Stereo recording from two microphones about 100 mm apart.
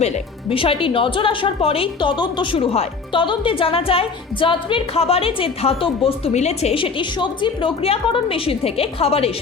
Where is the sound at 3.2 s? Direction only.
55° left (ahead or behind); by 9.3 s 80° left.